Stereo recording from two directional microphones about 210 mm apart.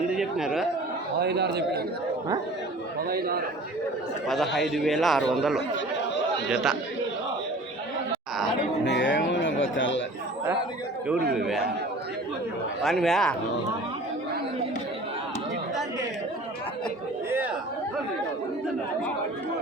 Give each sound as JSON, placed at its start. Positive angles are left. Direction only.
{"t": 0.1, "sound": "a sound", "side_deg": -5}
{"t": 1.2, "sound": "a man's voice", "side_deg": -50}
{"t": 3.1, "sound": "a man's voice", "side_deg": -45}
{"t": 4.3, "sound": "a man's voice", "side_deg": 0}
{"t": 8.8, "sound": "music", "side_deg": 60}
{"t": 11.2, "sound": "a man's voice", "side_deg": -50}
{"t": 12.8, "sound": "a man's voice", "side_deg": 0}